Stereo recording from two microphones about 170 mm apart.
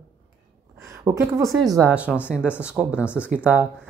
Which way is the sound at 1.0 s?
20° right (ahead or behind).